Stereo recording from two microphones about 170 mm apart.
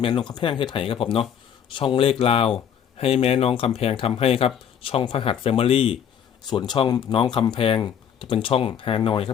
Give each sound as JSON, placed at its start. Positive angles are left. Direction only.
{"t": 0.0, "sound": "speech", "side_deg": 25}